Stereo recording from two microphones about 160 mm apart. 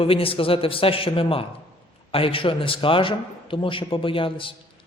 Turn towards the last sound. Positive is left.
turn(degrees=35)  # may be behind; listen again after turning